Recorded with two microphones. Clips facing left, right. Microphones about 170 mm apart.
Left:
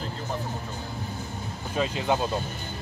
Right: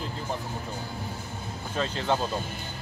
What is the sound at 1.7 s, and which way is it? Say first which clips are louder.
Speech: left 2 dB; 10° left (ahead or behind).